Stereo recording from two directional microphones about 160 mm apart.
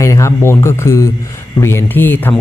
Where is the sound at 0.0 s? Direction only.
20° left (ahead or behind).